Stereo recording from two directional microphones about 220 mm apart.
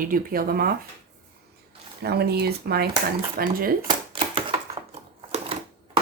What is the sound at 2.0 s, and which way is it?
Speech, 45° right (ahead or behind).